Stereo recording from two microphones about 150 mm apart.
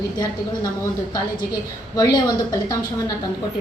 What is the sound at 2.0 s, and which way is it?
Speech, 25° left (ahead or behind).